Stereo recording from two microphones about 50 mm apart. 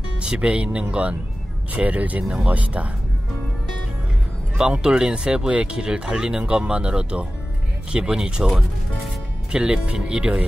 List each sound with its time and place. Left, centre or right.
0.2 s speech: right
4.8 s speech: centre
8.5 s speech: centre
9.5 s speech: right